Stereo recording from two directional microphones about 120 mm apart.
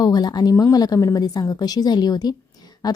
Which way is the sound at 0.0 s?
35° left (ahead or behind).